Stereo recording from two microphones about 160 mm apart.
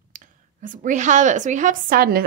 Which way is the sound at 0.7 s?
50° right (ahead or behind).